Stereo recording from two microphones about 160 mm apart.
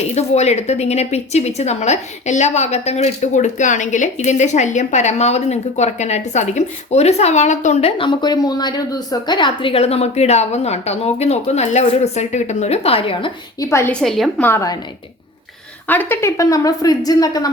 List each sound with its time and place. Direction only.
0.1 s a woman's voice: 45° left (ahead or behind)
13.6 s a woman's voice: 15° left (ahead or behind)
13.9 s a woman's voice: centre (ahead or behind)
15.9 s a woman's voice: 15° left (ahead or behind)